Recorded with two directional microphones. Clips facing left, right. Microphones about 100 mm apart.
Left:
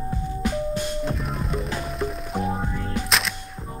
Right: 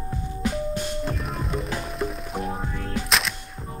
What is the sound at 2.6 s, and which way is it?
Music, 15° left (ahead or behind).